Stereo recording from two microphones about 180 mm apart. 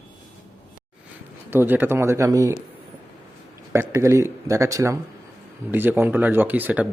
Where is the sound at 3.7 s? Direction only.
15° right (ahead or behind).